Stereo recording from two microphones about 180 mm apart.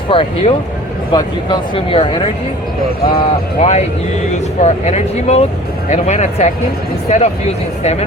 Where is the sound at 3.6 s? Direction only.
35° left (ahead or behind).